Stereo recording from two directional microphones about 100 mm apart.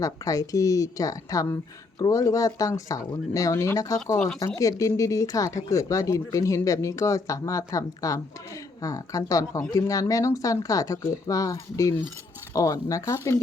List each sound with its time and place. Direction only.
0.0 s speech: 35° left (ahead or behind)